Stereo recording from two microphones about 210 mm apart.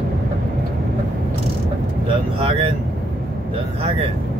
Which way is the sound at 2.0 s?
25° right (ahead or behind).